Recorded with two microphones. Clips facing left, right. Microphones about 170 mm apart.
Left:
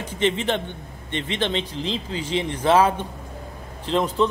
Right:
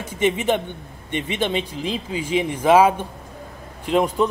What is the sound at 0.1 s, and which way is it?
Speech, 10° right (ahead or behind).